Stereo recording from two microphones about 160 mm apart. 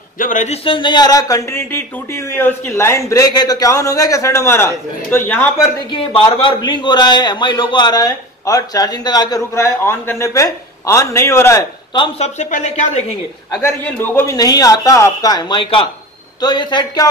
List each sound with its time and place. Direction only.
0.2 s speech: 50° left (ahead or behind)
0.7 s a man's voice: 30° left (ahead or behind); by 5.7 s 15° left (ahead or behind)
5.9 s a man's voice: 30° left (ahead or behind)
12.0 s speech: 45° left (ahead or behind)
13.5 s a man's voice: 15° left (ahead or behind)